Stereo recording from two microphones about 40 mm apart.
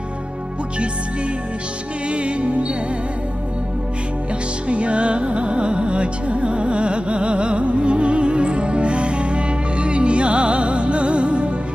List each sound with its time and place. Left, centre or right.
2.0 s music: right
4.7 s music: right